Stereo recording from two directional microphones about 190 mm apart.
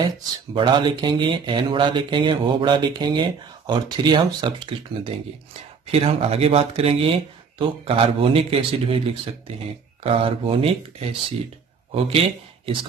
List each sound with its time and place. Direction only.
0.6 s speech: 25° right (ahead or behind)
11.9 s speech: 30° right (ahead or behind)